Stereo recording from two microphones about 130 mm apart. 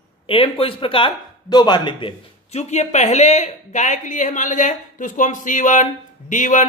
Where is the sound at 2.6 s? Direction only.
60° left (ahead or behind).